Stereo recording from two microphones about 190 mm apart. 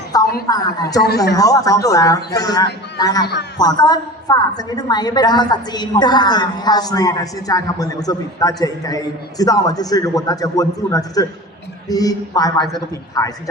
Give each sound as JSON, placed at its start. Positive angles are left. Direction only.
{"t": 0.4, "sound": "a woman's voice", "side_deg": 20}
{"t": 1.0, "sound": "speech", "side_deg": 60}
{"t": 1.3, "sound": "a woman's voice", "side_deg": 20}